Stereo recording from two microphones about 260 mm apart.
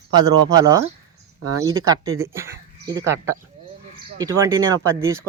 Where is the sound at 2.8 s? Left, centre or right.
Centre.